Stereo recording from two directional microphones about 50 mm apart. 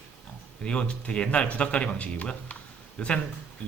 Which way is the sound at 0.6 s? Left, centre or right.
Centre.